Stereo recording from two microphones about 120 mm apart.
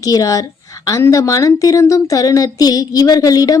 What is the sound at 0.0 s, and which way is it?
A woman's voice, 30° left (ahead or behind).